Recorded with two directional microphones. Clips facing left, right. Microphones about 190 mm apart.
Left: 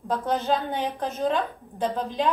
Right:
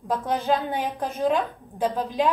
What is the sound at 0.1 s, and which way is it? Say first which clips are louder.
A woman's voice: right 1 dB; 10° right (ahead or behind).